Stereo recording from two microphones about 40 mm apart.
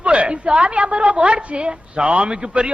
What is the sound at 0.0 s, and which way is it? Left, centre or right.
A woman's voice, right.